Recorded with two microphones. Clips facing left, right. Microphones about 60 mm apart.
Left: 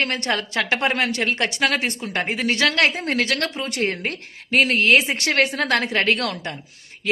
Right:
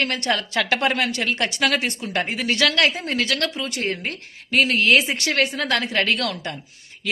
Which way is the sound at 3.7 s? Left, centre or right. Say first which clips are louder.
Left 2 dB; left.